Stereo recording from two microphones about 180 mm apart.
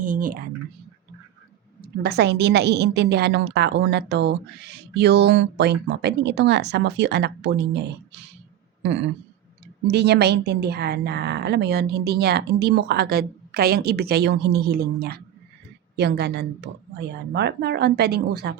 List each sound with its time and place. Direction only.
0.0 s speech: 50° right (ahead or behind)
1.8 s a woman's voice: 65° right (ahead or behind)
9.8 s a woman's voice: 70° right (ahead or behind)